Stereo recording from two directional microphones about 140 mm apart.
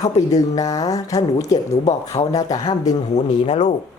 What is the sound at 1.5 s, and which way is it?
Speech, 55° left (ahead or behind).